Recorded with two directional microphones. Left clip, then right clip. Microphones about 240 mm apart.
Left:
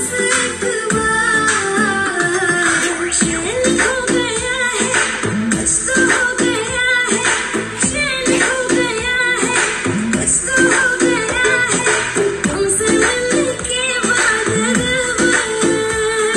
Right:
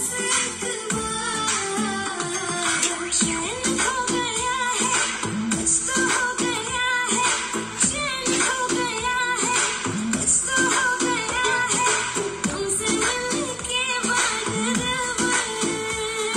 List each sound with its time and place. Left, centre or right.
5.5 s music: right
10.5 s music: right
12.8 s music: right